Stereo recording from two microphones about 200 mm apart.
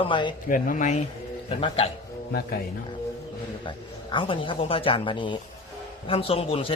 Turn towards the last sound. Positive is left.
turn(degrees=30)  # may be behind; listen again after turning